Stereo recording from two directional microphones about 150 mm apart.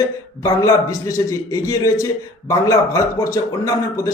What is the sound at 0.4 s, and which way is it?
A man's voice, 20° left (ahead or behind).